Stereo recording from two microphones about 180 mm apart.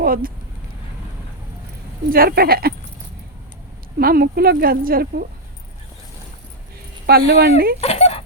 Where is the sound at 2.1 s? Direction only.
55° right (ahead or behind).